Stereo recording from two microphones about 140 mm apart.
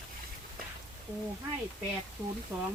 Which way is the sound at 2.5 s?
15° right (ahead or behind).